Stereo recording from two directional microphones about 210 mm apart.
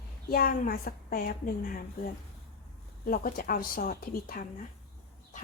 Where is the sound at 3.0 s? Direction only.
45° left (ahead or behind).